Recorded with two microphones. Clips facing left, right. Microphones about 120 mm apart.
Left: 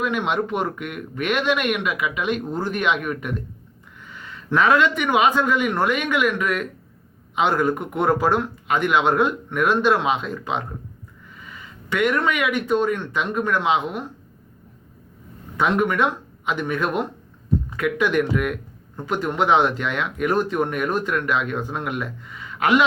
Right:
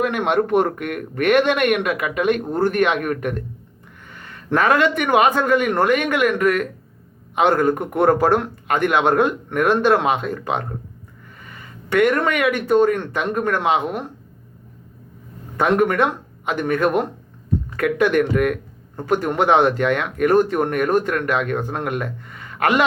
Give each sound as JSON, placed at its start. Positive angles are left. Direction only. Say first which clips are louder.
{"t": 0.0, "sound": "speech", "louder": "right 4 dB", "side_deg": -50}
{"t": 15.5, "sound": "speech", "louder": "right 3 dB", "side_deg": -45}